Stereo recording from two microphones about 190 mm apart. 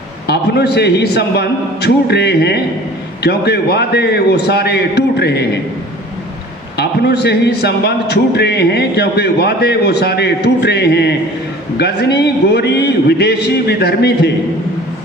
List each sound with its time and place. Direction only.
0.3 s a man's voice: 60° left (ahead or behind)
6.7 s a man's voice: 60° left (ahead or behind)